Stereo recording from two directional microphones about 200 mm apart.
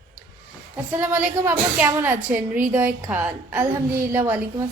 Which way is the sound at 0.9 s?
10° right (ahead or behind).